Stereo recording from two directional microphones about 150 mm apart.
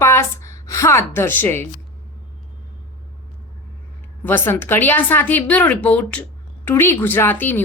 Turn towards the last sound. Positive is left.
turn(degrees=15)  # may be behind; listen again after turning